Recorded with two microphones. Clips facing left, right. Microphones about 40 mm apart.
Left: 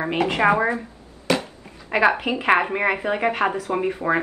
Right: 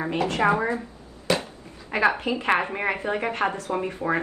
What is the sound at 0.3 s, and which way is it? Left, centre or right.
Speech, left.